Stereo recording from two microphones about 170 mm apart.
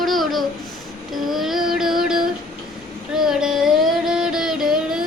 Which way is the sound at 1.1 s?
Centre (ahead or behind).